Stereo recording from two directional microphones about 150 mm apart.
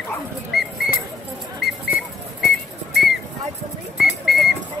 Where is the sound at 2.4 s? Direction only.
Centre (ahead or behind).